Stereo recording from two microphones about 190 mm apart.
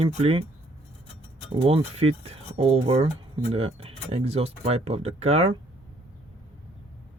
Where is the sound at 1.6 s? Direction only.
30° right (ahead or behind).